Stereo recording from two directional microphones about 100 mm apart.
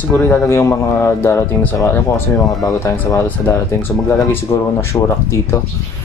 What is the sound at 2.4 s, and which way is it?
Speech, centre (ahead or behind).